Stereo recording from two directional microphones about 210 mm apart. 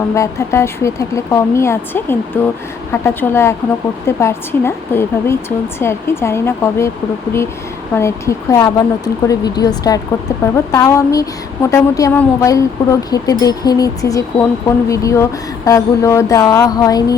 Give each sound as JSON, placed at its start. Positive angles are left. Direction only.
{"t": 0.1, "sound": "speech", "side_deg": 15}
{"t": 7.9, "sound": "speech", "side_deg": 15}